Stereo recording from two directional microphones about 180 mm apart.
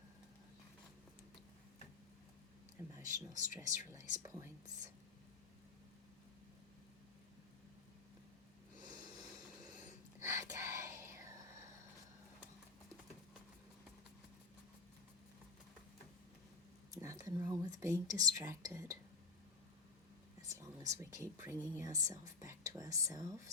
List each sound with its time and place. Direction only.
2.7 s speech: 15° right (ahead or behind)
8.8 s snort: 25° right (ahead or behind)
10.2 s whispering: 15° right (ahead or behind)
16.9 s a sound: 20° right (ahead or behind)
17.4 s speech: 20° right (ahead or behind)
20.5 s speech: 15° right (ahead or behind)